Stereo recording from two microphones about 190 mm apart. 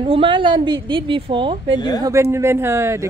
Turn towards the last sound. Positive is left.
turn(degrees=-15)  # may be behind; listen again after turning